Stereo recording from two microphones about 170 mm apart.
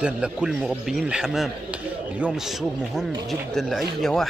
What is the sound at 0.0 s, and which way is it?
Speech, 5° right (ahead or behind).